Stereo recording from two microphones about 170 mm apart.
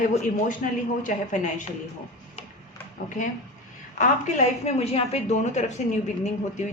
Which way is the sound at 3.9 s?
45° left (ahead or behind).